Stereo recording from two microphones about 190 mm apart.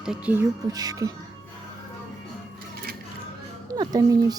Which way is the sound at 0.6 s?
20° right (ahead or behind).